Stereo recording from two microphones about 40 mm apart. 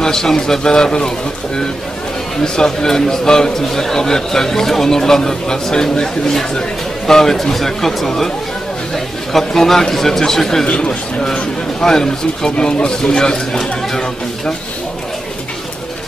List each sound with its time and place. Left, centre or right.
0.0 s a man's voice: centre
2.4 s a man's voice: centre
10.7 s speech: left
11.8 s a man's voice: centre